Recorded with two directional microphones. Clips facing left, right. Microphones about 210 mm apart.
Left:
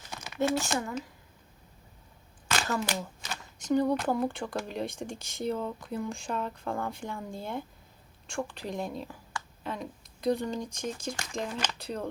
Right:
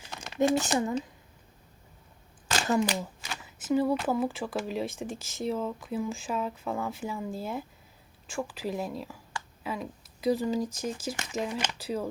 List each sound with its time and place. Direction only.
0.3 s speech: 15° right (ahead or behind)
0.7 s speech: 30° right (ahead or behind)
2.6 s speech: 15° right (ahead or behind)